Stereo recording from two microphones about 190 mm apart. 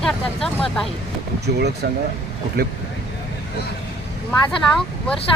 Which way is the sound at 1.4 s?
60° right (ahead or behind).